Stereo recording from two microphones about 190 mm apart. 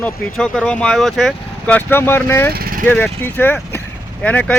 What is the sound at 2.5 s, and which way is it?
Vehicle, 50° right (ahead or behind).